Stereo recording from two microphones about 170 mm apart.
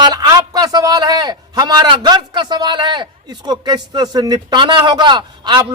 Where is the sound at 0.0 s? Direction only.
25° right (ahead or behind).